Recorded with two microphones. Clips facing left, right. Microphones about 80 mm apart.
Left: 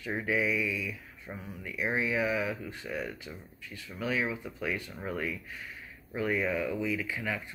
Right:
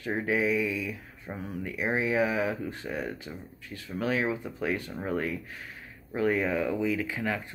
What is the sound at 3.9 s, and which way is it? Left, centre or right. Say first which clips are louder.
Speech: right 3 dB; right.